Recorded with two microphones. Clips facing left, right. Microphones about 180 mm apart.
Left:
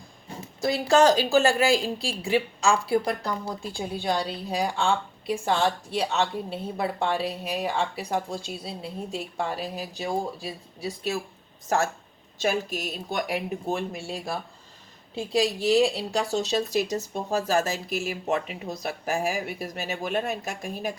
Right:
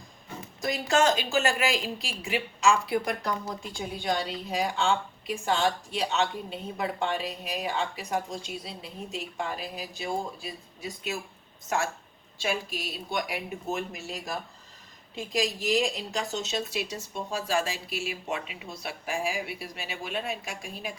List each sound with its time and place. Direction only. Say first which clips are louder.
0.6 s a woman's voice: left 5 dB; 35° left (ahead or behind)
12.4 s a woman's voice: left 5 dB; 45° left (ahead or behind)